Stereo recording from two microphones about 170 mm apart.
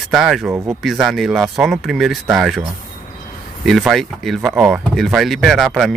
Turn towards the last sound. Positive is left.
turn(degrees=0)  # may be behind; listen again after turning